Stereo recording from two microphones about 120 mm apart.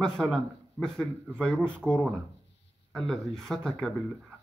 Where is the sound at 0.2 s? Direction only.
5° left (ahead or behind).